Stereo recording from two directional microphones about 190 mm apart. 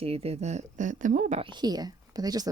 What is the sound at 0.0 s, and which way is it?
Speech, 30° right (ahead or behind).